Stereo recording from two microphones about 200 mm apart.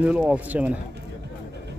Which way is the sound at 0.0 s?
5° right (ahead or behind).